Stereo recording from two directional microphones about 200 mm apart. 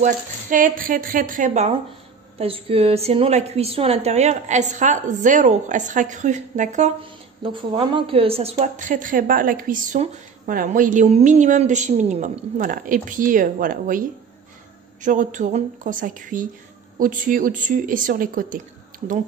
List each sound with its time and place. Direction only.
0.0 s speech: 40° right (ahead or behind)
7.0 s speech: 25° right (ahead or behind); by 18.6 s 45° right (ahead or behind)